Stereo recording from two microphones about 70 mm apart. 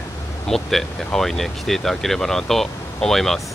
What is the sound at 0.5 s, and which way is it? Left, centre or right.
Speech, centre.